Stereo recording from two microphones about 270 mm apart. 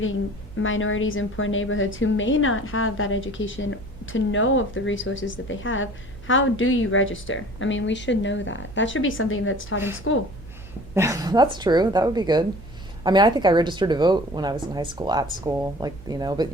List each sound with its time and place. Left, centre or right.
0.0 s a woman's voice: left
10.9 s speech: centre